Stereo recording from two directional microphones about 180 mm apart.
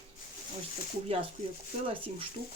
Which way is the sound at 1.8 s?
30° right (ahead or behind).